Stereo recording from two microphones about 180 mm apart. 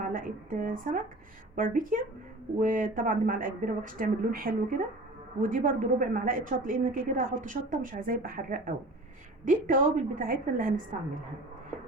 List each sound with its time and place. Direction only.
0.0 s speech: 50° right (ahead or behind)